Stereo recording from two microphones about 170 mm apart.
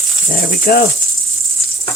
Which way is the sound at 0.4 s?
60° left (ahead or behind).